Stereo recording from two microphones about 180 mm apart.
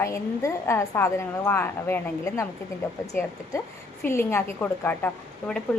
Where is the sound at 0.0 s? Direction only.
15° left (ahead or behind).